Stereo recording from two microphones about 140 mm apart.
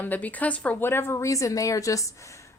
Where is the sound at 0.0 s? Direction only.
10° left (ahead or behind).